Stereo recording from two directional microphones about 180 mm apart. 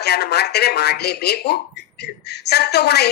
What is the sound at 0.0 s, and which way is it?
Speech, 65° left (ahead or behind).